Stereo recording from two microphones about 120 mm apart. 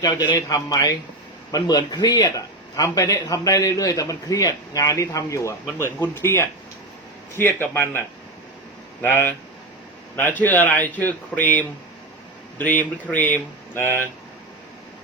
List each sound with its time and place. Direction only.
0.3 s a man's voice: 30° left (ahead or behind)